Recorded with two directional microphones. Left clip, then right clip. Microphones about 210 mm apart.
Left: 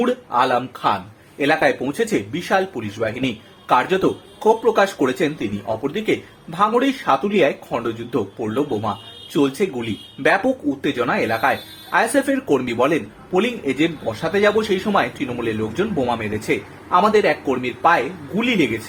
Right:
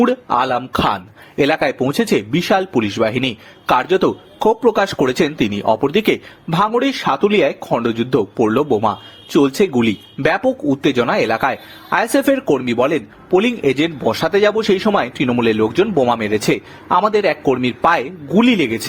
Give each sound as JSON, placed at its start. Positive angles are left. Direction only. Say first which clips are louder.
{"t": 0.0, "sound": "speech", "louder": "right 3 dB", "side_deg": -40}